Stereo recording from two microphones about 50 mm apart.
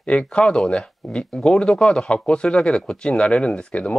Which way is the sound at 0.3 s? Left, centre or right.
Left.